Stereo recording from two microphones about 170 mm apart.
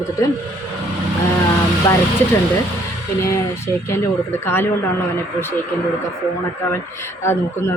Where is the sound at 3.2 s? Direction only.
15° left (ahead or behind).